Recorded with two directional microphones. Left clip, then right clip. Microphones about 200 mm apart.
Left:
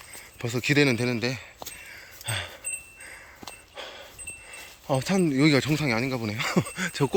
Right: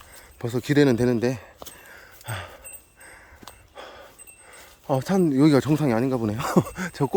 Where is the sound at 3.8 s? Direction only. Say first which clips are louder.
Left 1 dB; 25° right (ahead or behind).